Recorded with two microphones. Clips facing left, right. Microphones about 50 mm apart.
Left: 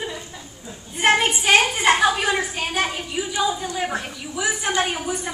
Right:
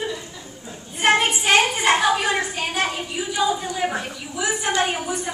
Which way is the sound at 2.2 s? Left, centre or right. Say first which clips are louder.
Even; centre.